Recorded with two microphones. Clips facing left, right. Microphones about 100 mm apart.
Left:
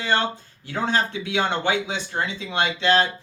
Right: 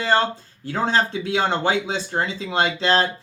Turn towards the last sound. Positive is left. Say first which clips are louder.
# right 1 dB
turn(degrees=-35)  # may be behind; listen again after turning